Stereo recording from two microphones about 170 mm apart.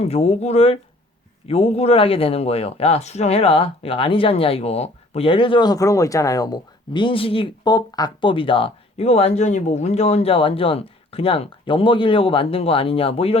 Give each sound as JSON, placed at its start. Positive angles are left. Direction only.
{"t": 0.0, "sound": "speech", "side_deg": 35}